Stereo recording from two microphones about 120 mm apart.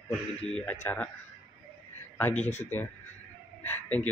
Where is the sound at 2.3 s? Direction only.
70° left (ahead or behind).